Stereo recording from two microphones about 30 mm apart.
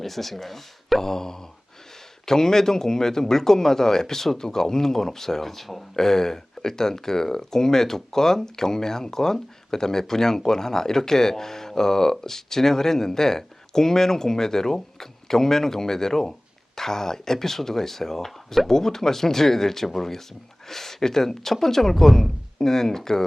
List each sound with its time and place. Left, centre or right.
0.0 s speech: centre
6.0 s speech: centre